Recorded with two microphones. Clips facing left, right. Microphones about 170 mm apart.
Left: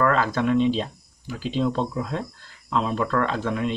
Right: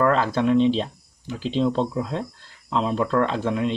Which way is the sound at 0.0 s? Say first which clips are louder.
Right 2 dB; 25° right (ahead or behind).